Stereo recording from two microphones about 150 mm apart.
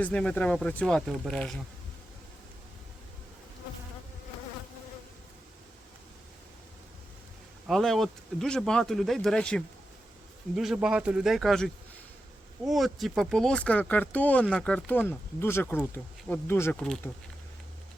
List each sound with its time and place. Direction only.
0.0 s speech: 10° left (ahead or behind)
7.7 s speech: centre (ahead or behind)
16.8 s speech: 5° left (ahead or behind)